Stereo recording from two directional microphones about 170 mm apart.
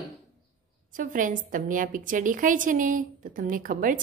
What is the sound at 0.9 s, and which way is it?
A woman's voice, 50° right (ahead or behind).